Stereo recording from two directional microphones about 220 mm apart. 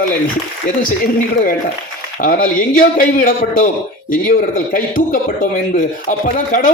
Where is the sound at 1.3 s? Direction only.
40° left (ahead or behind).